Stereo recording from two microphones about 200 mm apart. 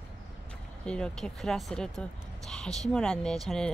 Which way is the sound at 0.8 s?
5° left (ahead or behind).